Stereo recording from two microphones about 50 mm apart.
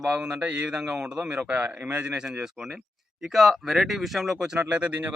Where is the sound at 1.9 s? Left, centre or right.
Right; by 4.2 s centre.